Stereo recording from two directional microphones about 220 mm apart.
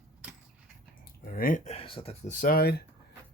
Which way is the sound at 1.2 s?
40° left (ahead or behind).